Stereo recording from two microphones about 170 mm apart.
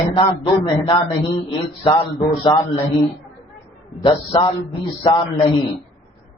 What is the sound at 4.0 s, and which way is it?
Mantra, 30° left (ahead or behind).